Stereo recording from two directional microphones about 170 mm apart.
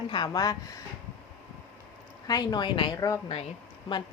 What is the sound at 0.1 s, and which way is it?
Speech, 25° left (ahead or behind).